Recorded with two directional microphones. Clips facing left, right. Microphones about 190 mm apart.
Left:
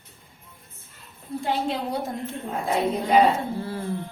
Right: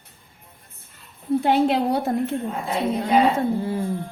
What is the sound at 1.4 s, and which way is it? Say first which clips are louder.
Speech: right 7 dB; 70° right (ahead or behind).